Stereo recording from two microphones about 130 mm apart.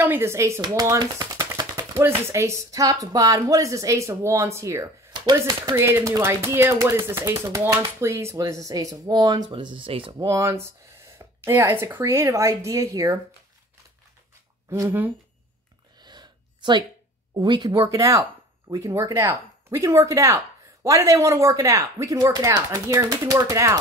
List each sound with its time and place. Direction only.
0.0 s speech: 15° right (ahead or behind); by 5.8 s 35° right (ahead or behind)
5.8 s speech: 20° right (ahead or behind); by 10.1 s 45° right (ahead or behind)
10.1 s speech: 25° right (ahead or behind)
14.7 s speech: 20° right (ahead or behind)
16.0 s a sound: 35° right (ahead or behind)
17.3 s speech: 35° right (ahead or behind)